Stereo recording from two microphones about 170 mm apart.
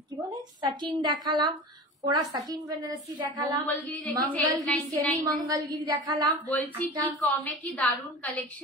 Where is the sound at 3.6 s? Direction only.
10° left (ahead or behind).